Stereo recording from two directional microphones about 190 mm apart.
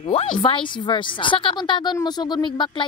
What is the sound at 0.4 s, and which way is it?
A woman's voice, 25° left (ahead or behind).